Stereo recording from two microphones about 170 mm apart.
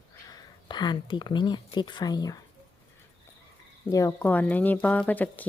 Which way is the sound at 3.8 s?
15° left (ahead or behind).